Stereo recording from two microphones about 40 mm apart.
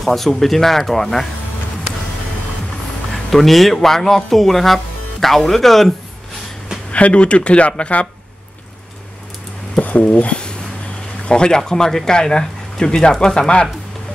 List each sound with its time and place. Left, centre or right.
0.0 s speech: centre
3.1 s speech: centre
6.9 s speech: left
9.8 s speech: left